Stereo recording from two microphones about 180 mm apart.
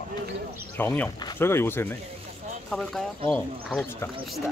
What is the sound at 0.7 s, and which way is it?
Speech, 10° left (ahead or behind).